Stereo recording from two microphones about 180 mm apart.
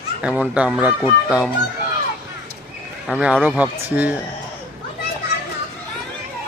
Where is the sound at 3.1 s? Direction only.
5° right (ahead or behind).